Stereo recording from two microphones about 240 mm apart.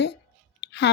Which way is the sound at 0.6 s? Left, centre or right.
Left.